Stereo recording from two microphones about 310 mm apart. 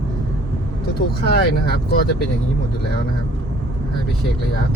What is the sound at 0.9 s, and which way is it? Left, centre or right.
Speech, left.